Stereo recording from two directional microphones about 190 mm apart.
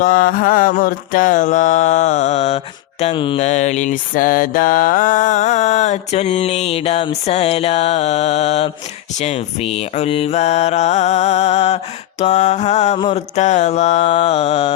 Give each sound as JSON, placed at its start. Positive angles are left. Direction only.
{"t": 0.0, "sound": "mantra", "side_deg": 45}